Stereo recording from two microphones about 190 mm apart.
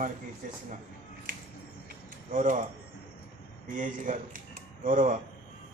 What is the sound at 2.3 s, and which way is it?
Speech, 40° right (ahead or behind).